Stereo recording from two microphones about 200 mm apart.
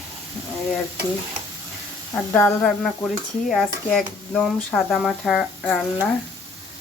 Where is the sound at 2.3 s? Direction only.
10° left (ahead or behind).